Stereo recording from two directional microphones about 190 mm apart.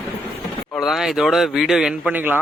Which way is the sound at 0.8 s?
Centre (ahead or behind).